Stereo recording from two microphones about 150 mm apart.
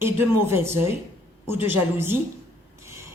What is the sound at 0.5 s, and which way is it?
Speech, 15° right (ahead or behind).